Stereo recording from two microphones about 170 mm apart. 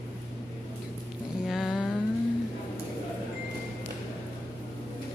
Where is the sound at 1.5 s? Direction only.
Centre (ahead or behind).